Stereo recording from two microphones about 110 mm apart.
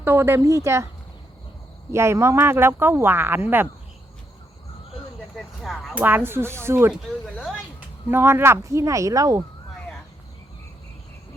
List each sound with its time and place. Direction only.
0.0 s speech: 20° right (ahead or behind)
1.9 s speech: 25° right (ahead or behind)
5.4 s a sound: centre (ahead or behind)
5.9 s speech: 15° right (ahead or behind)
8.1 s speech: 20° right (ahead or behind)